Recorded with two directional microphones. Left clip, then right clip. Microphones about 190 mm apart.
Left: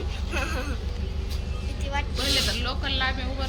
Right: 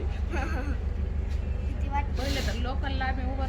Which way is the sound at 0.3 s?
5° right (ahead or behind).